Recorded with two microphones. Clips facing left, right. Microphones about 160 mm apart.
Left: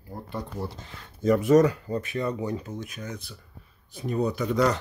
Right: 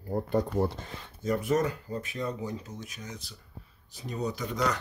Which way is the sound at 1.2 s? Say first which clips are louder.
Left 8 dB; 90° left.